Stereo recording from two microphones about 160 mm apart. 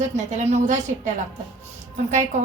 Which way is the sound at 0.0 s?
45° right (ahead or behind).